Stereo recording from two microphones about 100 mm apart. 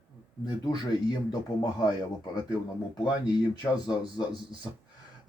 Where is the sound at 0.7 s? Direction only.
45° left (ahead or behind).